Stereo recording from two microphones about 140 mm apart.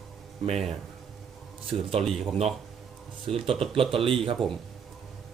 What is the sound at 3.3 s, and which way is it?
Speech, 45° right (ahead or behind).